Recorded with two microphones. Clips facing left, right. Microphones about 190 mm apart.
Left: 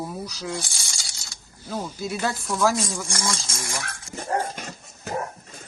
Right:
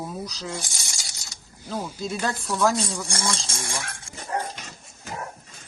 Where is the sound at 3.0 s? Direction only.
30° right (ahead or behind).